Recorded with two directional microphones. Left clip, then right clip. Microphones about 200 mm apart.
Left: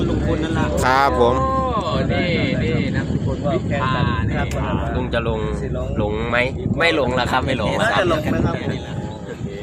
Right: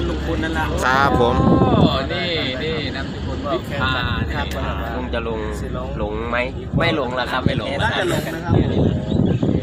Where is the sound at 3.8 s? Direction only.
20° right (ahead or behind).